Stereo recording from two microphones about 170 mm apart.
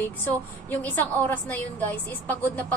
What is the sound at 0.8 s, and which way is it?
A woman's voice, 10° left (ahead or behind).